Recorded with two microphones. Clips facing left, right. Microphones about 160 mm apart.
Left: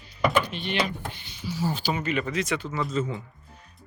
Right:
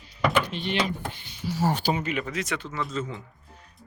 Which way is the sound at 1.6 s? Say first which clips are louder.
Right 3 dB; 75° right (ahead or behind).